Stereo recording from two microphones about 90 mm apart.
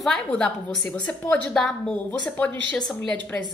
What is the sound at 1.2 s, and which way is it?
Speech, 20° left (ahead or behind).